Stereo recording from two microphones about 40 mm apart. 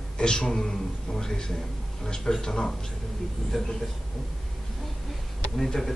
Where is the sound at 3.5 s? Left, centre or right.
Centre.